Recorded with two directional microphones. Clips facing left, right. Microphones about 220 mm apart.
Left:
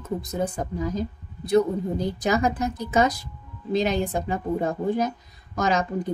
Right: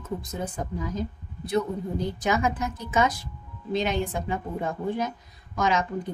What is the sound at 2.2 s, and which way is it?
A woman's voice, 40° left (ahead or behind).